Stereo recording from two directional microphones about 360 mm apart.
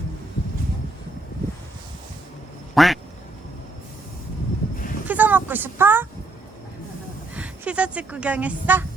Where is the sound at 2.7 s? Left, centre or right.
Centre.